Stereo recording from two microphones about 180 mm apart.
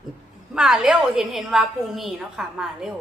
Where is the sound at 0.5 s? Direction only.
5° right (ahead or behind).